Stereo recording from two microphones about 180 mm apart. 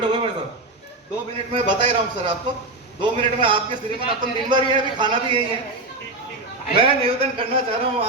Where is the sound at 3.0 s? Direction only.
25° right (ahead or behind).